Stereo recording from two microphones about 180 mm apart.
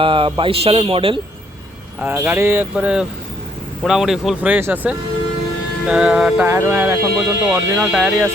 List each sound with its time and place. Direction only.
0.0 s speech: 30° right (ahead or behind)
2.0 s speech: 10° right (ahead or behind)
5.9 s music: 5° right (ahead or behind)
6.5 s speech: 10° right (ahead or behind)